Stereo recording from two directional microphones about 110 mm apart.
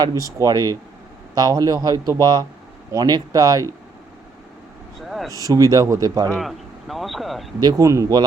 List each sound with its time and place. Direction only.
0.0 s speech: 35° right (ahead or behind)
4.9 s vehicle: centre (ahead or behind)
5.3 s speech: 35° right (ahead or behind)
6.4 s a man's voice: centre (ahead or behind)
7.6 s speech: 35° right (ahead or behind)